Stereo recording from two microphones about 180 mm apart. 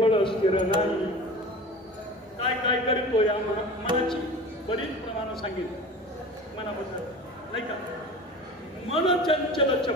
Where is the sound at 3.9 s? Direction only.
25° right (ahead or behind).